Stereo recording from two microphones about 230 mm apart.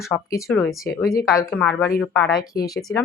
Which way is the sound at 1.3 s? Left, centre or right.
Centre.